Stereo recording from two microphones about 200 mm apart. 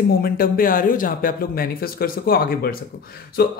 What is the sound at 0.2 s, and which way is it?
Speech, 45° left (ahead or behind).